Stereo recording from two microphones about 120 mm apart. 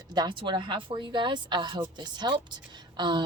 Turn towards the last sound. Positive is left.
turn(degrees=-40)  # may be behind; listen again after turning